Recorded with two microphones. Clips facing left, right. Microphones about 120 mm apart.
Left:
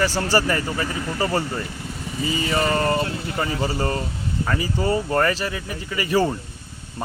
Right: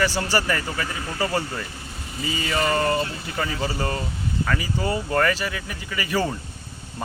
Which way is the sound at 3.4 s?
30° left (ahead or behind).